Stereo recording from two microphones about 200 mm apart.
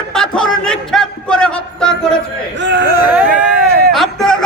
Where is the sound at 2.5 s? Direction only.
60° right (ahead or behind).